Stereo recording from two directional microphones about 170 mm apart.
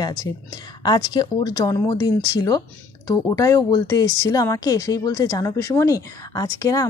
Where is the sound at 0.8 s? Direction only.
25° left (ahead or behind).